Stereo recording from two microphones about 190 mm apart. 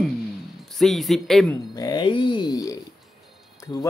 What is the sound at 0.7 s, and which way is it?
Speech, centre (ahead or behind).